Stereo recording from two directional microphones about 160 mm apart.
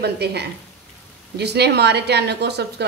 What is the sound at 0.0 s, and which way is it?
A woman's voice, 90° right.